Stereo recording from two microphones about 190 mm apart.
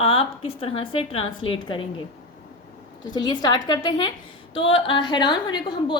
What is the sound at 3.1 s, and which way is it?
A woman's voice, 20° left (ahead or behind).